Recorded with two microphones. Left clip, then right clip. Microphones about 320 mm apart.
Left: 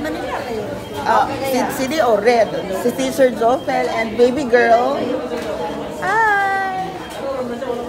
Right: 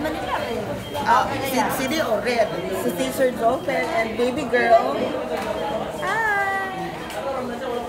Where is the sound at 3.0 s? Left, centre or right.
Left.